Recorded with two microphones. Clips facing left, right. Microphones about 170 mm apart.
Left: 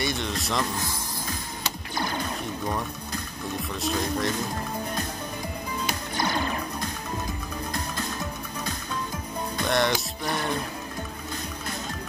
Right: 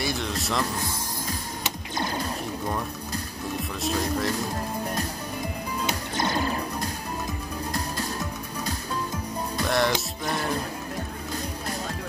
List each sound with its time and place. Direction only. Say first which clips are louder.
0.0 s speech: even; centre (ahead or behind)
3.8 s speech: right 1 dB; centre (ahead or behind)
5.9 s music: right 1 dB; 20° right (ahead or behind)
9.7 s speech: even; centre (ahead or behind)